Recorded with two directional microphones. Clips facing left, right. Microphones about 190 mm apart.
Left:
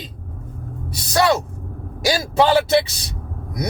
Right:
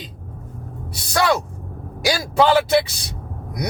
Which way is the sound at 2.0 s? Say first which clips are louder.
Even; 20° left (ahead or behind).